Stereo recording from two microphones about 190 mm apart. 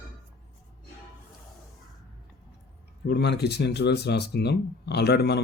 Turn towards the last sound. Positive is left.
turn(degrees=60)  # may be behind; listen again after turning